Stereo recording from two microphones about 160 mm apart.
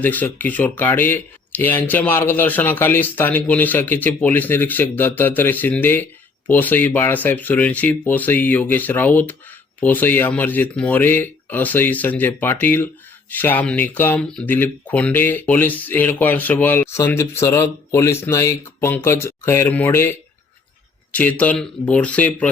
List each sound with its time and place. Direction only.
0.0 s speech: 10° left (ahead or behind)